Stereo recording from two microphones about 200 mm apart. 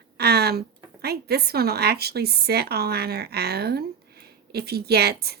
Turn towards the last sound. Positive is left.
turn(degrees=-55)  # may be behind; listen again after turning